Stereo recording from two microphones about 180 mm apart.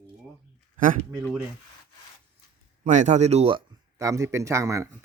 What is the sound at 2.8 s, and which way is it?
Speech, 40° right (ahead or behind).